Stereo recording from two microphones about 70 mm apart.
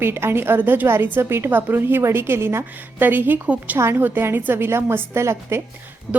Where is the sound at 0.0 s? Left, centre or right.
Right.